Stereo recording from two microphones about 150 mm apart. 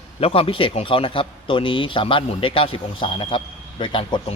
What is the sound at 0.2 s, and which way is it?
A man's voice, 40° left (ahead or behind).